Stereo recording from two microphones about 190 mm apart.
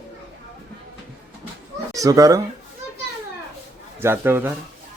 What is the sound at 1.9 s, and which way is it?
Speech, 15° right (ahead or behind).